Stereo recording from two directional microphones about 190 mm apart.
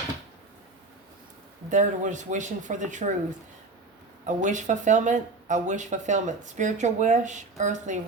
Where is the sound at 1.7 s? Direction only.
40° right (ahead or behind).